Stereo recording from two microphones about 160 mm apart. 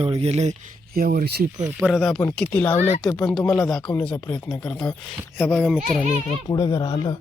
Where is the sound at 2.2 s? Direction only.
10° left (ahead or behind).